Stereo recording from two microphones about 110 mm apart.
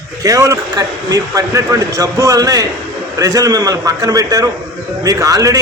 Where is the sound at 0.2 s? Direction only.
30° right (ahead or behind).